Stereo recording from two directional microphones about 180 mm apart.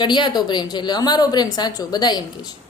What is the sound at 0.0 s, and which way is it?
A woman's voice, 25° left (ahead or behind).